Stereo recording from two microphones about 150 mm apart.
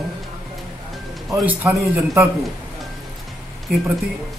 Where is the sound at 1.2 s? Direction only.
5° right (ahead or behind).